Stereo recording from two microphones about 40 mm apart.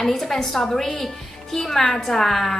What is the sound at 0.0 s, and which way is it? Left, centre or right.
A woman's voice, centre.